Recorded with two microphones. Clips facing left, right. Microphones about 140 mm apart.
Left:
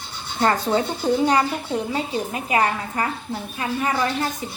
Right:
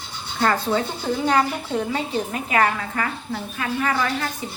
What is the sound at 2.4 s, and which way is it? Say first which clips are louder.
Speech: even; 20° left (ahead or behind).